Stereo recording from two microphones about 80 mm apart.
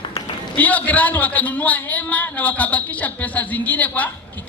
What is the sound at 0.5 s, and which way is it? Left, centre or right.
A man's voice, centre.